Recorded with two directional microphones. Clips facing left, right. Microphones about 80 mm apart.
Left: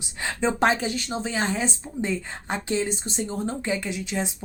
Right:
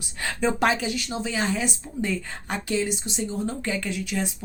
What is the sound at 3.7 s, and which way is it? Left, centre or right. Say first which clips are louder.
Speech: even; left.